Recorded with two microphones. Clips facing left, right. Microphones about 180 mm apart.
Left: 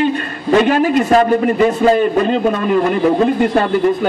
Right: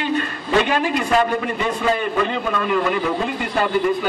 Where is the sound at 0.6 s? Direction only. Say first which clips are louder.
Left 7 dB; 40° left (ahead or behind).